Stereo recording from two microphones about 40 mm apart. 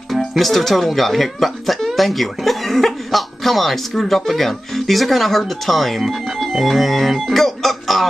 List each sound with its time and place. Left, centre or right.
0.3 s speech: centre